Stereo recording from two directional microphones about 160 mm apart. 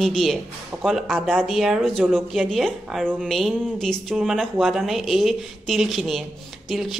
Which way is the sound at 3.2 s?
Centre (ahead or behind).